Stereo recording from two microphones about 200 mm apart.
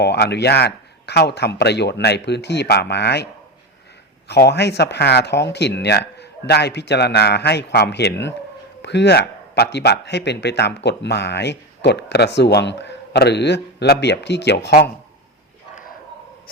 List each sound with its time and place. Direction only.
0.0 s a man's voice: 55° left (ahead or behind)
4.3 s a man's voice: 55° left (ahead or behind)